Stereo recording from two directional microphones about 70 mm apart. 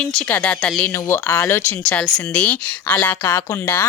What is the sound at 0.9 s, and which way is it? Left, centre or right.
Speech, left.